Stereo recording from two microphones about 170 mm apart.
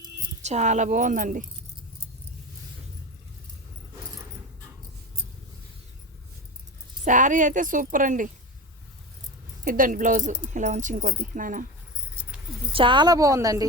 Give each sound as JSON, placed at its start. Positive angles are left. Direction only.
{"t": 0.4, "sound": "a woman's voice", "side_deg": -45}
{"t": 7.0, "sound": "a woman's voice", "side_deg": -50}
{"t": 9.6, "sound": "a woman's voice", "side_deg": -55}
{"t": 12.7, "sound": "a woman's voice", "side_deg": -30}